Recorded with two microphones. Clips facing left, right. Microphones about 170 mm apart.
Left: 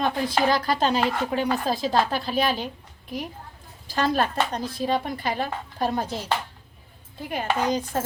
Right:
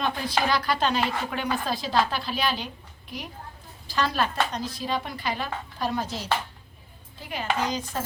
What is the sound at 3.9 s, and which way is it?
A woman's voice, 50° left (ahead or behind).